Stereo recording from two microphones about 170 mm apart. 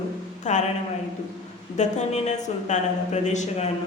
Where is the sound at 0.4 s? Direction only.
45° left (ahead or behind).